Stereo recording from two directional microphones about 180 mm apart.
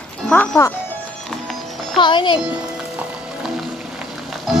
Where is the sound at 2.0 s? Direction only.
25° left (ahead or behind).